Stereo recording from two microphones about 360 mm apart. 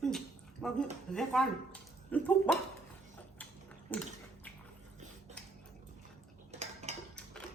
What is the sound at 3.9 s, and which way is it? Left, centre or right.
Speech, centre.